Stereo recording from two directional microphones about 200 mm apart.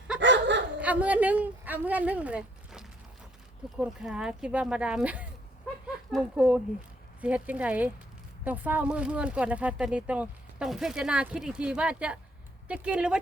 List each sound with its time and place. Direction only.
0.2 s dog: 60° right (ahead or behind)
0.8 s speech: 5° right (ahead or behind)